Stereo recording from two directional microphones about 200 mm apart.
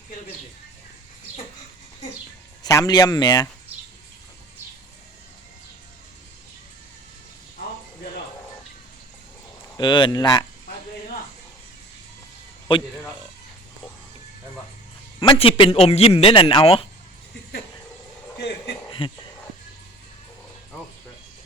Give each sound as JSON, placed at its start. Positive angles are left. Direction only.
{"t": 2.6, "sound": "a man's voice", "side_deg": 20}
{"t": 9.7, "sound": "a man's voice", "side_deg": 25}
{"t": 12.7, "sound": "a man's voice", "side_deg": 25}
{"t": 15.2, "sound": "a man's voice", "side_deg": 25}
{"t": 18.9, "sound": "a sound", "side_deg": 25}